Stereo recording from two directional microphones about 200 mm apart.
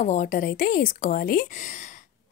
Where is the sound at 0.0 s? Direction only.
40° left (ahead or behind).